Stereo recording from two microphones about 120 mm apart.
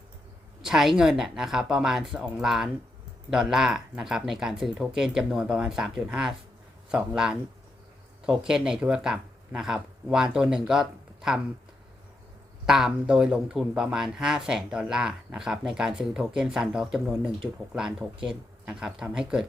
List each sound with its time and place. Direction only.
0.6 s speech: 5° right (ahead or behind)
12.6 s speech: 5° right (ahead or behind)